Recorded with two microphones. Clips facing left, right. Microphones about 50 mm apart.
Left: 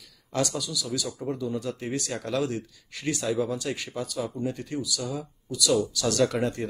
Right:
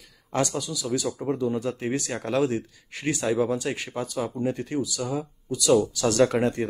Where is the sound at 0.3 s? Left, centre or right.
Right.